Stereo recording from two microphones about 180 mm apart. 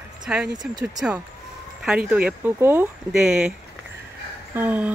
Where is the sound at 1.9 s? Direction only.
5° right (ahead or behind).